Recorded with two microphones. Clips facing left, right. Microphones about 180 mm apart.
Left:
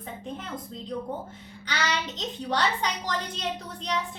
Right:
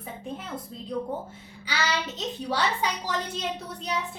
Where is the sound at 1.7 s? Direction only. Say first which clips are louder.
Right 1 dB; 5° right (ahead or behind).